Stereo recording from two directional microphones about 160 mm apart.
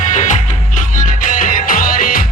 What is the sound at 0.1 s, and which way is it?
Music, 50° left (ahead or behind).